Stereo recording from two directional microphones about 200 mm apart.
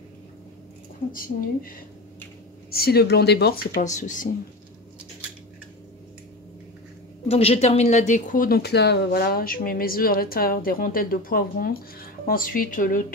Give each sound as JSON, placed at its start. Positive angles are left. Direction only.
{"t": 1.1, "sound": "speech", "side_deg": 45}
{"t": 2.7, "sound": "speech", "side_deg": 50}
{"t": 3.8, "sound": "speech", "side_deg": 40}
{"t": 7.2, "sound": "speech", "side_deg": 30}